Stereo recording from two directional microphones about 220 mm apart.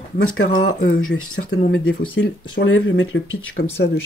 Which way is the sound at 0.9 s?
70° left (ahead or behind).